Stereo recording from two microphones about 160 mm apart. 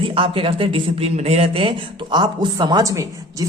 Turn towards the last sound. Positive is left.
turn(degrees=-20)  # may be behind; listen again after turning